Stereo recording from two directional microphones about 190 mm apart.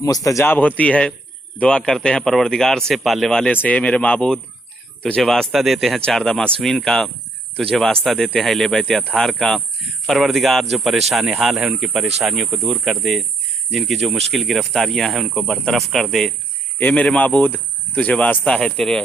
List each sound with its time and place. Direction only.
0.0 s speech: 20° left (ahead or behind)